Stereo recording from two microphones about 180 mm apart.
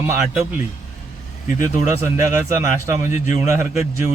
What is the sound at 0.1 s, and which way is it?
Speech, 15° right (ahead or behind).